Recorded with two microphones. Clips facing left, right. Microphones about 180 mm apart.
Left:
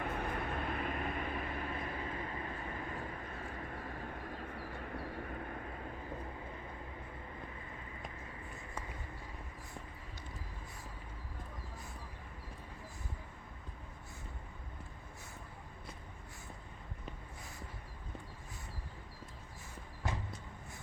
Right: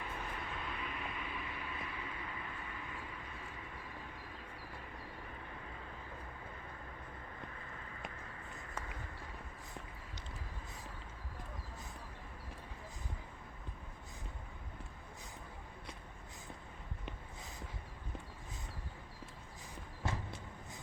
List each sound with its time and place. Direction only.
0.0 s vehicle: 55° left (ahead or behind)